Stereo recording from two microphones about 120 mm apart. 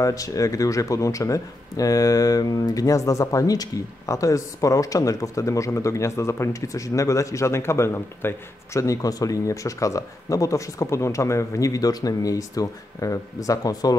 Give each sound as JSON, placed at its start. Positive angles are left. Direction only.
{"t": 0.0, "sound": "speech", "side_deg": 30}